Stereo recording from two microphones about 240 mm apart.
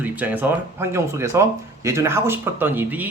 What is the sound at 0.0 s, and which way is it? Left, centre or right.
Speech, centre.